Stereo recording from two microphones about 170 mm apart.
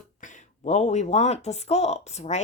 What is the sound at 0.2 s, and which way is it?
Speech, 45° left (ahead or behind).